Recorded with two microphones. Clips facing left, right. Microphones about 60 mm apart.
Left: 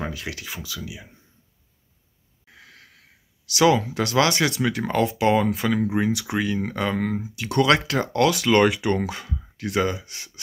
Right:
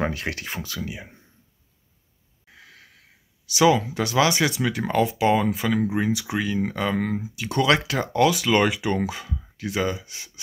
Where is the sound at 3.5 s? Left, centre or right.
Centre.